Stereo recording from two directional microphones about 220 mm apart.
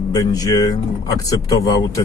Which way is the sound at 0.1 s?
15° left (ahead or behind).